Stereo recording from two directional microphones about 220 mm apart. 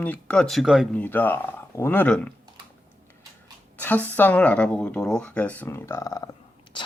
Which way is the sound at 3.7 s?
10° left (ahead or behind).